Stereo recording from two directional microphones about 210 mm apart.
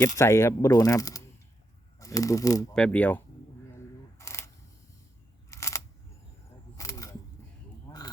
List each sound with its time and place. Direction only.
0.2 s speech: 15° left (ahead or behind)
4.2 s single-lens reflex camera: 15° left (ahead or behind)
5.5 s camera: 15° left (ahead or behind)
6.7 s single-lens reflex camera: 15° left (ahead or behind)
7.9 s frog: 20° left (ahead or behind)